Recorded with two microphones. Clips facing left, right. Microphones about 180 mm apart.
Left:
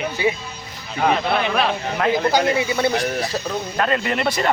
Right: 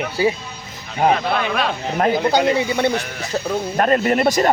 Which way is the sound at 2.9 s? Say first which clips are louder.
Left 3 dB; 35° left (ahead or behind).